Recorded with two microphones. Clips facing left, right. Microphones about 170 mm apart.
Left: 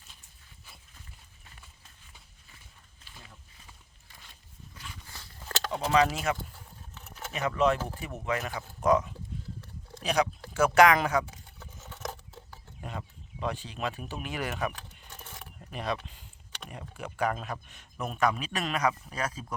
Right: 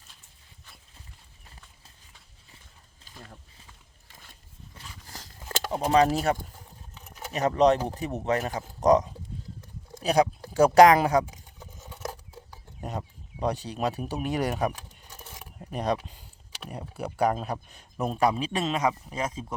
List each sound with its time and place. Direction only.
4.7 s a sound: 35° right (ahead or behind)
5.4 s a sound: 10° right (ahead or behind)
5.9 s speech: 35° right (ahead or behind)
6.9 s a sound: 15° right (ahead or behind)
7.3 s speech: 35° right (ahead or behind)
11.3 s patter: 15° right (ahead or behind)
12.8 s speech: 40° right (ahead or behind)
14.7 s keys jangling: 10° right (ahead or behind)
15.5 s mechanisms: 40° right (ahead or behind)
16.6 s speech: 35° right (ahead or behind)